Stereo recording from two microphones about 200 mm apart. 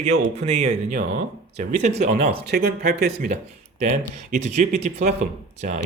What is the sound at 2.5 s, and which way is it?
Speech, 50° right (ahead or behind).